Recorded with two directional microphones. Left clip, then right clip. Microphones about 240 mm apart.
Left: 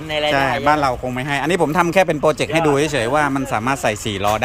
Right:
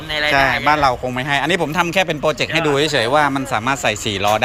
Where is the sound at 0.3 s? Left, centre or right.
Centre.